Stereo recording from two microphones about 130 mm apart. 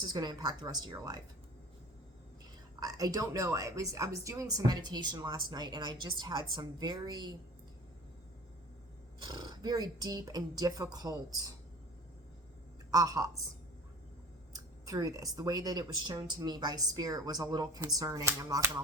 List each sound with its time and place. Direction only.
0.1 s a woman's voice: 30° right (ahead or behind)
2.8 s a woman's voice: 30° right (ahead or behind)
9.2 s speech: 30° right (ahead or behind)
12.9 s speech: 30° right (ahead or behind)
14.5 s speech: 25° right (ahead or behind)